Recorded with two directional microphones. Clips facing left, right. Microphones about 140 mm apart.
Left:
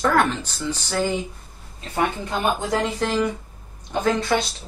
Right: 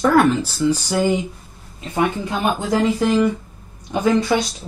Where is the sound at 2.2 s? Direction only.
5° right (ahead or behind).